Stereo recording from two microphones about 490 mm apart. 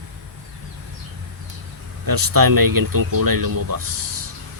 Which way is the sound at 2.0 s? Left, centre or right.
Right.